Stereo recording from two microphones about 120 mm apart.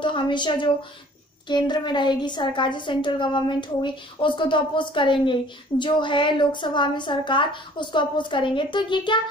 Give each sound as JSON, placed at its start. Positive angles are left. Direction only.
{"t": 0.0, "sound": "a woman's voice", "side_deg": 40}